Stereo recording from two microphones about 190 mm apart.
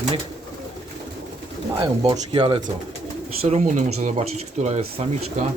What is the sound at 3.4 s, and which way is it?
Speech, 40° right (ahead or behind).